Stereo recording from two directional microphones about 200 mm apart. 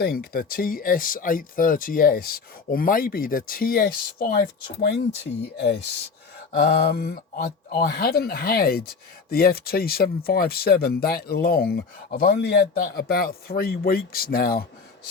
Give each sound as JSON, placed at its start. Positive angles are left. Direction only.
{"t": 0.0, "sound": "speech", "side_deg": 50}
{"t": 6.5, "sound": "speech", "side_deg": 50}